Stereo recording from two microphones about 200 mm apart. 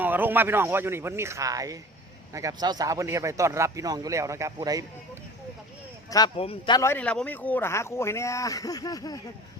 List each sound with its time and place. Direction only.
0.0 s speech: 10° right (ahead or behind)
6.1 s speech: 20° left (ahead or behind)